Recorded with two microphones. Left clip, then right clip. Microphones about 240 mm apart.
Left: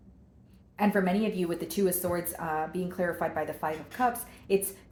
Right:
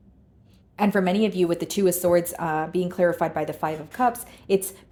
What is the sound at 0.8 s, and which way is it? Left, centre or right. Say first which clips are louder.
A woman's voice: right 5 dB; right.